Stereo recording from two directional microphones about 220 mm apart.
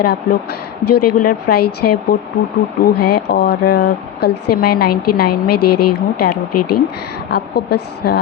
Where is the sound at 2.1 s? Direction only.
40° left (ahead or behind).